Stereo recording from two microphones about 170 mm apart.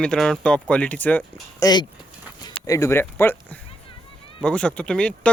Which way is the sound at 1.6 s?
25° left (ahead or behind).